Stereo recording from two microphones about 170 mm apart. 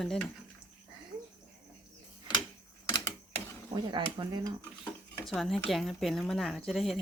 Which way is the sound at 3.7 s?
25° right (ahead or behind).